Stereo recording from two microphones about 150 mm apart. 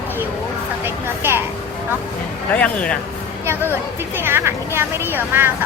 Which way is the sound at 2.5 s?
10° left (ahead or behind).